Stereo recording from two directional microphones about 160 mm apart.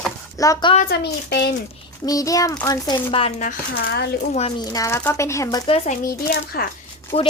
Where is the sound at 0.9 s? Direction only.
90° left.